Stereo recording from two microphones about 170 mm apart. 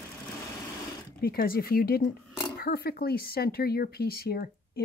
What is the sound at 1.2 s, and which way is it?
Speech, 60° left (ahead or behind).